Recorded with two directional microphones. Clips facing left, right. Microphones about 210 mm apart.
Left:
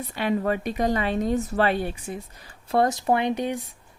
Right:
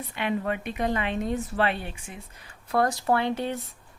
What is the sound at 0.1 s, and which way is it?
Speech, 40° left (ahead or behind).